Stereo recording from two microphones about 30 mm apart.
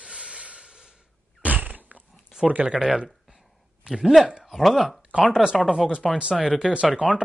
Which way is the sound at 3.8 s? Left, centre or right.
Centre.